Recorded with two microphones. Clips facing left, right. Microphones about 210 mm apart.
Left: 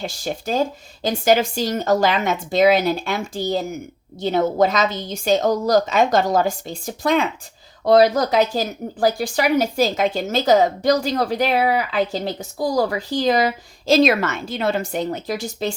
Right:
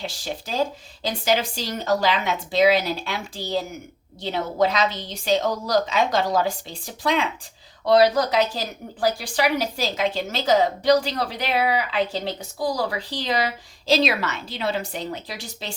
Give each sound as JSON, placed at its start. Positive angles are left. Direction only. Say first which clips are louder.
{"t": 0.0, "sound": "a woman's voice", "louder": "left 5 dB", "side_deg": 45}